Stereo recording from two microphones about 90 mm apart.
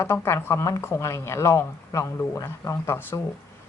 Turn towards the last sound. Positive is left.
turn(degrees=25)  # may be behind; listen again after turning